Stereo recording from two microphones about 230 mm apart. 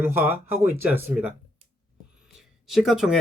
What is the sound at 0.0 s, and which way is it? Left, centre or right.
Speech, centre.